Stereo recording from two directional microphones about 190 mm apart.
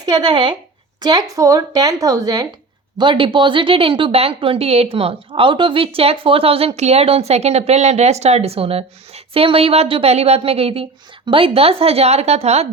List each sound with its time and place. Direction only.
0.0 s a woman's voice: 25° right (ahead or behind)